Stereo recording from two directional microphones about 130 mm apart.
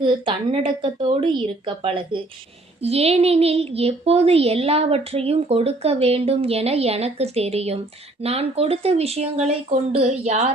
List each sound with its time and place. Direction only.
0.0 s a woman's voice: 40° right (ahead or behind); by 10.5 s 60° right (ahead or behind)